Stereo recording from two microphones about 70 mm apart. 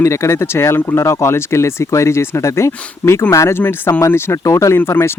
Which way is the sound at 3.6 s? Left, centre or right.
Left.